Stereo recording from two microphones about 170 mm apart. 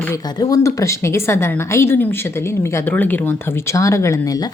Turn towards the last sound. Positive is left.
turn(degrees=20)  # may be behind; listen again after turning